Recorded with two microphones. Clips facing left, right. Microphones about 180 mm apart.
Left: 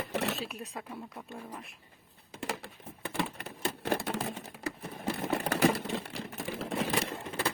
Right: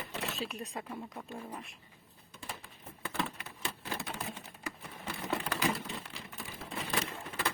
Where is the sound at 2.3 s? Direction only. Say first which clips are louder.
Left 9 dB; 90° left.